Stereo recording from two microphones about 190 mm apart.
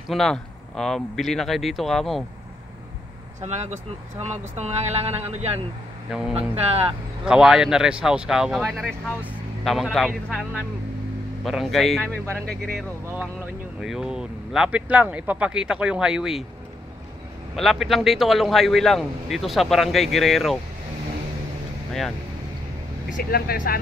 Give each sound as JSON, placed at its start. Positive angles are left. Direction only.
{"t": 0.1, "sound": "speech", "side_deg": 0}
{"t": 3.3, "sound": "speech", "side_deg": -35}
{"t": 7.2, "sound": "speech", "side_deg": -5}
{"t": 17.6, "sound": "speech", "side_deg": 0}
{"t": 23.0, "sound": "speech", "side_deg": 50}